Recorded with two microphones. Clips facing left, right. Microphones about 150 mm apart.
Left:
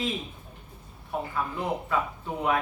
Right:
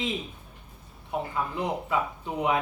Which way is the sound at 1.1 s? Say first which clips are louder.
Right 1 dB; 15° right (ahead or behind).